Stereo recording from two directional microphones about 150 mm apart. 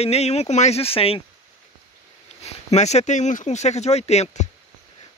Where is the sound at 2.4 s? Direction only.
45° left (ahead or behind).